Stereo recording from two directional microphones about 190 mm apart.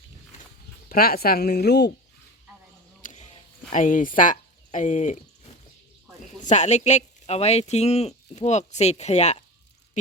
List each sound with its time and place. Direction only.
0.9 s speech: 50° left (ahead or behind)
3.0 s a sound: 40° left (ahead or behind)
3.7 s speech: 40° left (ahead or behind)